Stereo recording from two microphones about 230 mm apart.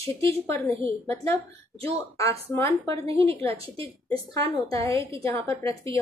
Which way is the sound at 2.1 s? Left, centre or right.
Centre.